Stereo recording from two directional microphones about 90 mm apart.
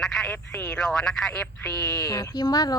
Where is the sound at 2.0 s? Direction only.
40° left (ahead or behind).